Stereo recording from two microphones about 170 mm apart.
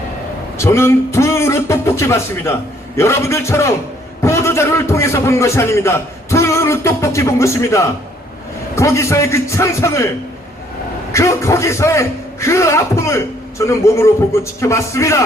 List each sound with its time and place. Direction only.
0.6 s a man's voice: 15° left (ahead or behind)
4.2 s a sound: 15° left (ahead or behind)
6.3 s a man's voice: 15° left (ahead or behind)
11.1 s a man's voice: 15° left (ahead or behind)